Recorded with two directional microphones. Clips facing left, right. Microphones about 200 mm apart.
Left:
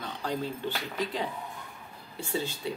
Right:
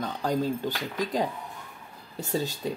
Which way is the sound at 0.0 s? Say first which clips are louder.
Right 6 dB; 40° right (ahead or behind).